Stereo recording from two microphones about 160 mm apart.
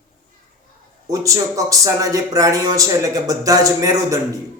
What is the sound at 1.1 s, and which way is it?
Speech, 20° right (ahead or behind).